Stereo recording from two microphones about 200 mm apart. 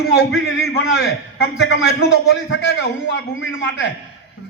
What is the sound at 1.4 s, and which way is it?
A man's voice, 60° left (ahead or behind).